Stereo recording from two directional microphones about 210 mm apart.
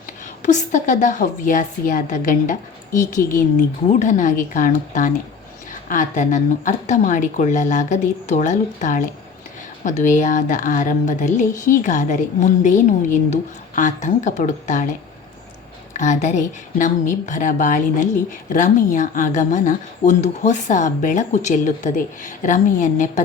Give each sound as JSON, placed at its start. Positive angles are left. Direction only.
{"t": 0.4, "sound": "speech", "side_deg": 35}
{"t": 15.9, "sound": "speech", "side_deg": 35}